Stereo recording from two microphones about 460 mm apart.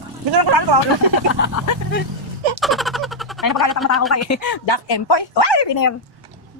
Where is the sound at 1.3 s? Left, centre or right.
Left.